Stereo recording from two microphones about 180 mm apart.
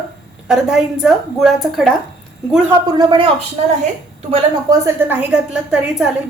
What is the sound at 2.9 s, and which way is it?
Speech, 25° right (ahead or behind).